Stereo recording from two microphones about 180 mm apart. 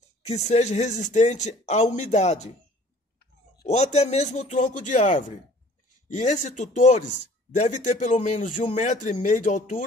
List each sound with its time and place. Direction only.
0.2 s speech: 40° left (ahead or behind)
3.6 s speech: 35° left (ahead or behind)